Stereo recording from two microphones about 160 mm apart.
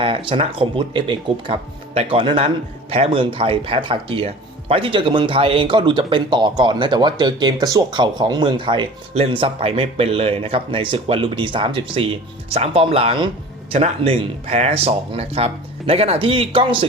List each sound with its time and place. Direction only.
0.0 s speech: 35° right (ahead or behind)